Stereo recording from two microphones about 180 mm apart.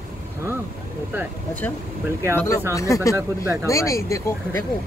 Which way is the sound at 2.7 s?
15° left (ahead or behind).